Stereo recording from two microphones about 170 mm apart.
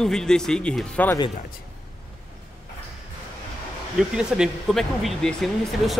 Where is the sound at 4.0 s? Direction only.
5° right (ahead or behind).